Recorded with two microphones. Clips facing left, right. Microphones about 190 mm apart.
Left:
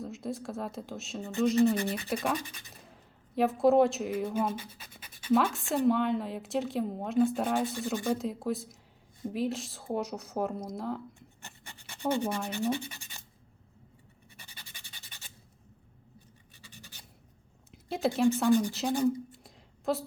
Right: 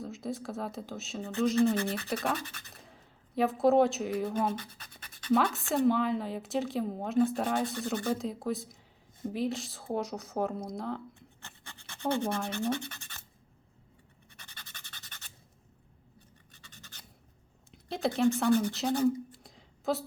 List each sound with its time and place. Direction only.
0.0 s a woman's voice: centre (ahead or behind)
2.8 s a woman's voice: centre (ahead or behind)
11.4 s scratch: 15° left (ahead or behind)
12.5 s speech: 15° left (ahead or behind)
14.5 s rub: 10° left (ahead or behind)
16.7 s a sound: 10° left (ahead or behind)
18.7 s a woman's voice: centre (ahead or behind)
19.0 s a sound: centre (ahead or behind)